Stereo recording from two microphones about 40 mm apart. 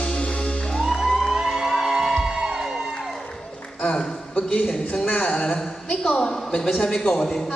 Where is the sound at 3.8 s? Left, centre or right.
Left.